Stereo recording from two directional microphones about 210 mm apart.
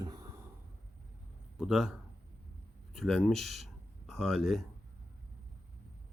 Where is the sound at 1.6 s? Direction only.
5° right (ahead or behind).